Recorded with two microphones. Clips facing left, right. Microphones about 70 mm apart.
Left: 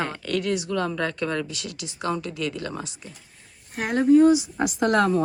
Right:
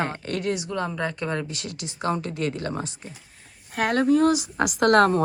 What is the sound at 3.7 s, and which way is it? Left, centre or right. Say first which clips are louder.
Speech: left 2 dB; right.